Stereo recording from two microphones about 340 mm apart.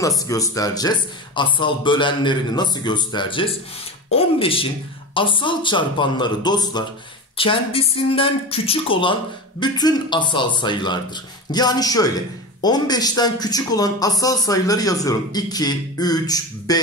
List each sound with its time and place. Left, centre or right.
0.0 s speech: centre